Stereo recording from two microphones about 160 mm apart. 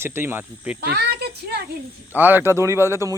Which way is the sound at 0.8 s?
80° right.